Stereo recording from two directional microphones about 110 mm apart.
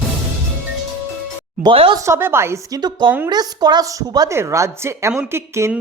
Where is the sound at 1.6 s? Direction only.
50° right (ahead or behind).